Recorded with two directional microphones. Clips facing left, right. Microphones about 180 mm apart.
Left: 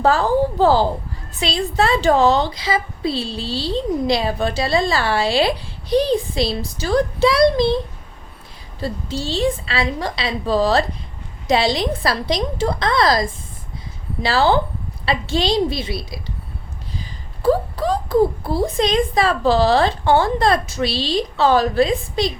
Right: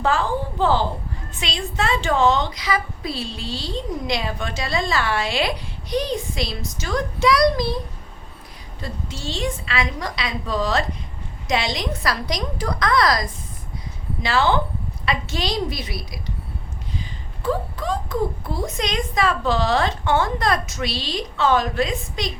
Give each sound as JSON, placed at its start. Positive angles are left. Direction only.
{"t": 0.0, "sound": "a woman's voice", "side_deg": 35}
{"t": 8.8, "sound": "a woman's voice", "side_deg": 35}
{"t": 17.4, "sound": "a woman's voice", "side_deg": 35}